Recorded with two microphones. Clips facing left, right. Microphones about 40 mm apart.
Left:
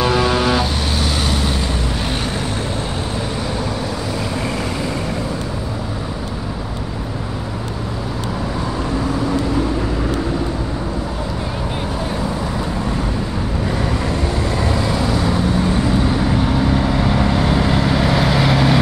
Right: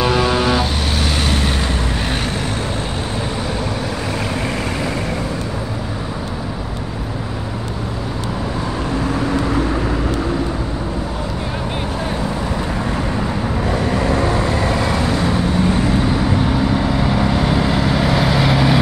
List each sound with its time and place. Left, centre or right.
0.0 s vehicle: centre
14.1 s vehicle: right
15.1 s vehicle: centre